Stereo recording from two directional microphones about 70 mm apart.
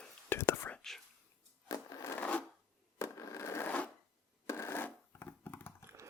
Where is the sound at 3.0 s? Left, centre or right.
Left.